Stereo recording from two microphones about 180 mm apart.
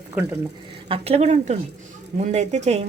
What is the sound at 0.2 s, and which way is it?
Speech, 10° right (ahead or behind).